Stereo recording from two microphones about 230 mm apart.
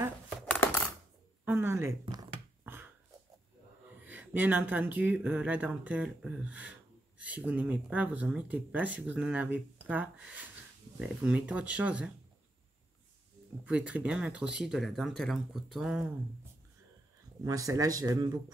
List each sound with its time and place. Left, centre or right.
1.4 s a sound: centre
4.0 s speech: centre
13.7 s speech: centre
17.4 s speech: centre